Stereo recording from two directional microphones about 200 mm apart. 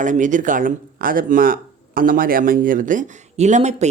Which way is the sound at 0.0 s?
40° right (ahead or behind).